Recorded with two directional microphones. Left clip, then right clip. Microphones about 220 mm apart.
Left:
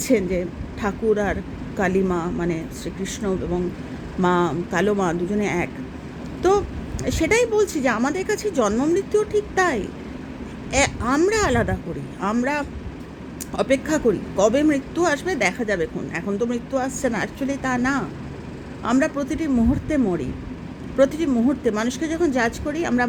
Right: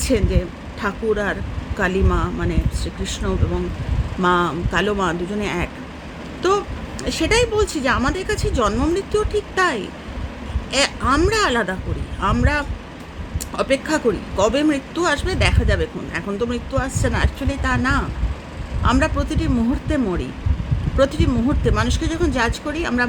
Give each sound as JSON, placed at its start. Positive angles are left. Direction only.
{"t": 0.0, "sound": "speech", "side_deg": -10}